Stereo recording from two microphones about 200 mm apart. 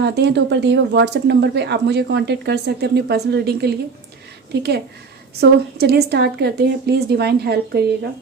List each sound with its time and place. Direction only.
0.0 s speech: 60° right (ahead or behind)